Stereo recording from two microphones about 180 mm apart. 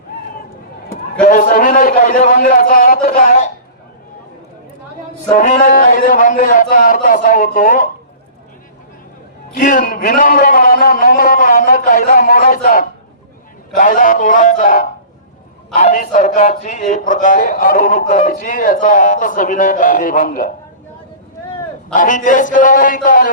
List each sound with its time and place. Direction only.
1.2 s a man's voice: 50° left (ahead or behind)
5.3 s a man's voice: 45° left (ahead or behind)
9.6 s a man's voice: 50° left (ahead or behind)
21.9 s a man's voice: 45° left (ahead or behind)